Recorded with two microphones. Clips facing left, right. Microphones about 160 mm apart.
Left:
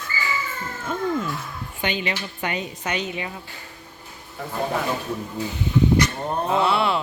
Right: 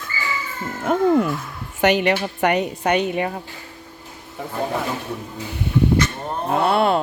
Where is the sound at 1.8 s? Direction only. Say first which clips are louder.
Right 10 dB; 70° right (ahead or behind); by 3.4 s 55° right (ahead or behind).